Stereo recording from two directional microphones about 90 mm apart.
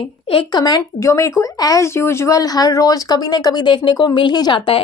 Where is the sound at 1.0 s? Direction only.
35° left (ahead or behind).